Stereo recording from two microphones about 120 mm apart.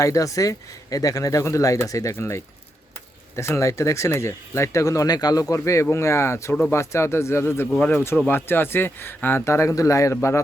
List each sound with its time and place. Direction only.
0.0 s speech: 25° left (ahead or behind)